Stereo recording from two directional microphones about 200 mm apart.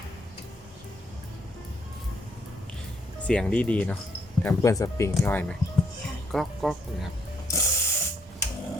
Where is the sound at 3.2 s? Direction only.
5° left (ahead or behind).